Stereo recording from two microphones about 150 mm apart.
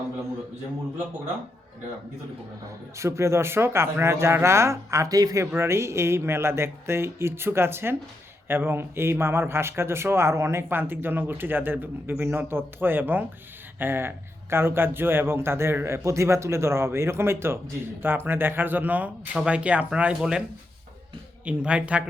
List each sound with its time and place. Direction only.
3.0 s a man's voice: 20° right (ahead or behind)
21.4 s a man's voice: 10° right (ahead or behind)